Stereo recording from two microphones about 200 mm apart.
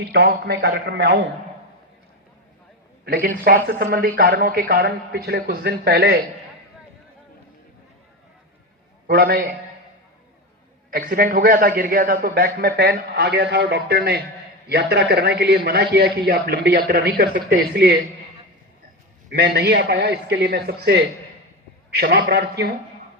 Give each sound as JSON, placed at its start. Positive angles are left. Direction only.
{"t": 0.0, "sound": "a man's voice", "side_deg": -55}
{"t": 3.0, "sound": "a man's voice", "side_deg": -50}
{"t": 9.0, "sound": "a man's voice", "side_deg": -50}
{"t": 10.9, "sound": "a man's voice", "side_deg": -45}
{"t": 19.3, "sound": "a man's voice", "side_deg": -55}